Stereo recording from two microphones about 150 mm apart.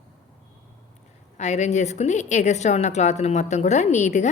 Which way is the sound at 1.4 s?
50° left (ahead or behind).